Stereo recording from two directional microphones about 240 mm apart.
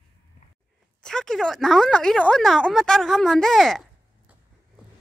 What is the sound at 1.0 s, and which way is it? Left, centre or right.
Speech, centre.